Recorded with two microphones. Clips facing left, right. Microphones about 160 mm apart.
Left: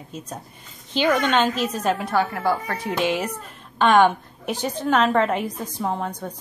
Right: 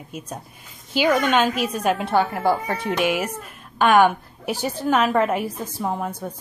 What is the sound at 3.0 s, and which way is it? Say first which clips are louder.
A woman's voice: left 2 dB; 10° right (ahead or behind).